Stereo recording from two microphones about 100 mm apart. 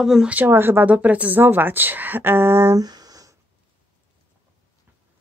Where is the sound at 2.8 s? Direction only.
40° right (ahead or behind).